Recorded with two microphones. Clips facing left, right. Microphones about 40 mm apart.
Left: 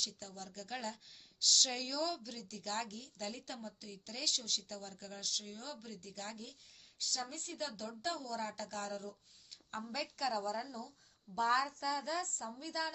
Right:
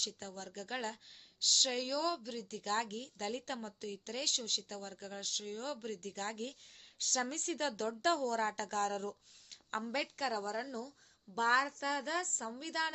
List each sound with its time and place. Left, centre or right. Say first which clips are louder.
0.0 s a woman's voice: right 2 dB; right
5.9 s a woman's voice: right 6 dB; right